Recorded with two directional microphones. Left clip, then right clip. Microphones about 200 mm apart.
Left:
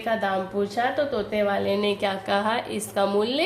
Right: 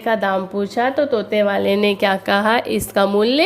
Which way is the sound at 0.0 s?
45° right (ahead or behind).